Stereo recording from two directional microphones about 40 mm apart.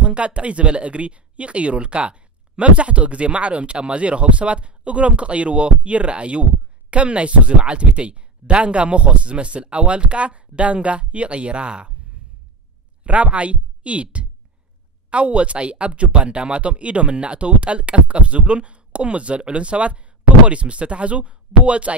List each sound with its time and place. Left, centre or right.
0.0 s speech: right
13.0 s speech: right
15.0 s speech: right